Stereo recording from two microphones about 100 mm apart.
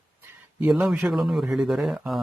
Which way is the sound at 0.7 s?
Centre (ahead or behind).